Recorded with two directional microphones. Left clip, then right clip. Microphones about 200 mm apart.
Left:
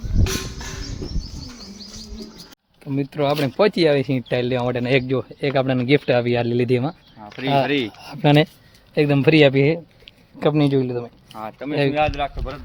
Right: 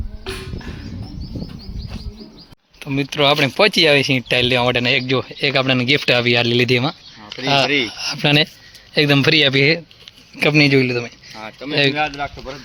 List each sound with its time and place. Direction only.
2.8 s speech: centre (ahead or behind)
11.3 s speech: 25° left (ahead or behind)
11.7 s speech: centre (ahead or behind)